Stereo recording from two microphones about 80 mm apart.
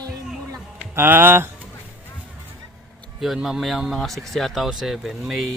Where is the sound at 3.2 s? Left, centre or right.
Centre.